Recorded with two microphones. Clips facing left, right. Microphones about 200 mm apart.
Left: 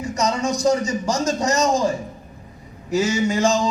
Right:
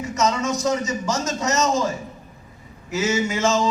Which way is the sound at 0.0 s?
35° left (ahead or behind).